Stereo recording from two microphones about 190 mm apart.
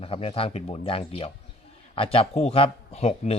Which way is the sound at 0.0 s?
30° left (ahead or behind).